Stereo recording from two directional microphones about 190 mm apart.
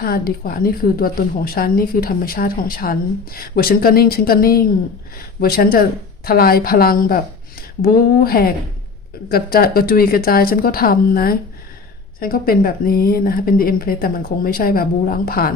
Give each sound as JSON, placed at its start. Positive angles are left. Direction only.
{"t": 0.0, "sound": "speech", "side_deg": 50}